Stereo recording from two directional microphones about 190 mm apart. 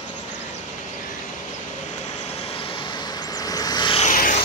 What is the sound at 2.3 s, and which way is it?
Vehicle, 30° left (ahead or behind).